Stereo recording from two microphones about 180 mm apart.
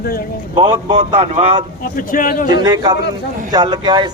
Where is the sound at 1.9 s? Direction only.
50° left (ahead or behind).